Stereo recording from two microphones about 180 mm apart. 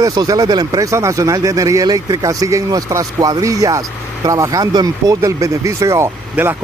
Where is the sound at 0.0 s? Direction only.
20° right (ahead or behind).